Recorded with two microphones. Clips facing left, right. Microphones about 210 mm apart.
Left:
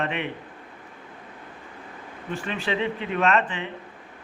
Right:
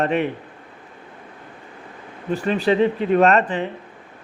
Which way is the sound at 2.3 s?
35° right (ahead or behind).